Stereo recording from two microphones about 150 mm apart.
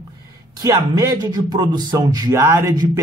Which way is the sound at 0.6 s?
20° right (ahead or behind).